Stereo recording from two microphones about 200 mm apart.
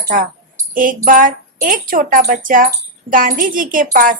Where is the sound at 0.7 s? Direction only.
45° right (ahead or behind).